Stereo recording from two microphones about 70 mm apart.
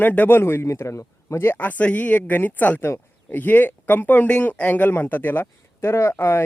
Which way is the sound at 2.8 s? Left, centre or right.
Left.